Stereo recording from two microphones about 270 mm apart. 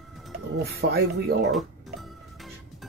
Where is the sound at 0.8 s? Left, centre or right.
Right.